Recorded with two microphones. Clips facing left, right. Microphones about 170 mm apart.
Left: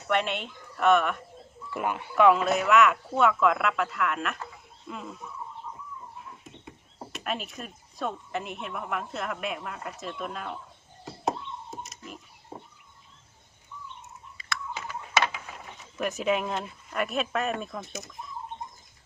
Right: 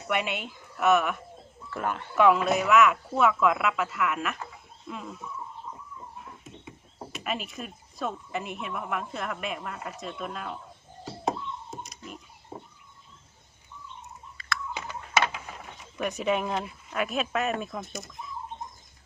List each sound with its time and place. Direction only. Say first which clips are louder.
0.1 s speech: left 2 dB; 5° right (ahead or behind)
1.7 s speech: left 1 dB; 10° left (ahead or behind)
2.1 s speech: left 1 dB; centre (ahead or behind)
6.4 s speech: right 1 dB; centre (ahead or behind)
11.0 s a sound: even; centre (ahead or behind)
14.7 s computer keyboard: even; 20° right (ahead or behind)
16.0 s speech: even; centre (ahead or behind)